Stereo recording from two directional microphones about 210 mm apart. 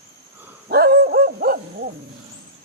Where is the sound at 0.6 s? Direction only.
50° right (ahead or behind).